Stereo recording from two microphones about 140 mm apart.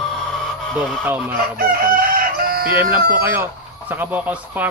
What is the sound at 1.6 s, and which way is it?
Chicken, 90° right.